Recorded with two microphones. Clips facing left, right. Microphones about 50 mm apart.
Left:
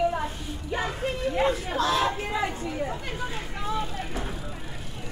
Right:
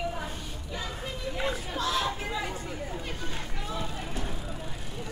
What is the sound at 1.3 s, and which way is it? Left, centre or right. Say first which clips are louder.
Chatter: left 6 dB; left.